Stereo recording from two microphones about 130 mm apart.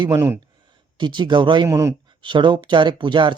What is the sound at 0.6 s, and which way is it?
Speech, 35° right (ahead or behind).